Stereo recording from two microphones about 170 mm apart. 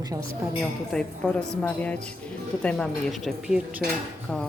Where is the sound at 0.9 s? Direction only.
5° left (ahead or behind).